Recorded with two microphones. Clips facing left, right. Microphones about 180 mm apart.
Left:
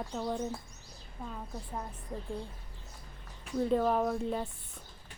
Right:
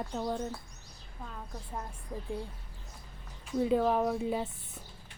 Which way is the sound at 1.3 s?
5° left (ahead or behind).